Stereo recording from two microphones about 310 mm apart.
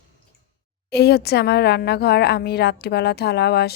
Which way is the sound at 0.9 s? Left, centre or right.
Left.